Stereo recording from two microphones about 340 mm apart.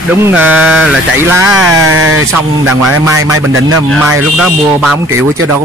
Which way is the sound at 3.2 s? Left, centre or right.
Right.